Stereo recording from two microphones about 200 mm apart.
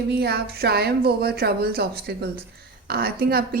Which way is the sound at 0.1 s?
55° right (ahead or behind).